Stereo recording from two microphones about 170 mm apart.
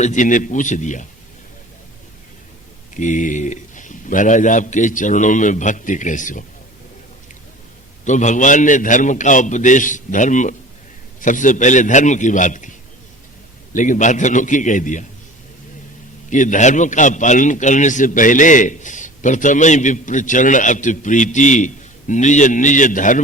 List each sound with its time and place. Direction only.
0.0 s a man's voice: 45° left (ahead or behind)
2.9 s a man's voice: 50° left (ahead or behind)
8.0 s a man's voice: 45° left (ahead or behind)
13.7 s a man's voice: 50° left (ahead or behind)
16.3 s a man's voice: 50° left (ahead or behind)